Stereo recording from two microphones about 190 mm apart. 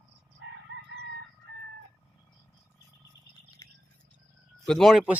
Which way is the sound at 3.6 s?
15° left (ahead or behind).